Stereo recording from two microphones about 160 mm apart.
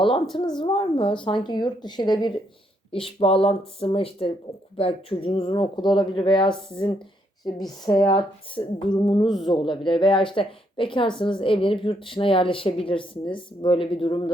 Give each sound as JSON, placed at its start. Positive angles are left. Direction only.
{"t": 0.6, "sound": "a woman's voice", "side_deg": 35}